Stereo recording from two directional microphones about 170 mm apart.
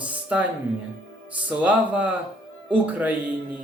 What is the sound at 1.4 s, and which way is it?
Speech, 10° right (ahead or behind).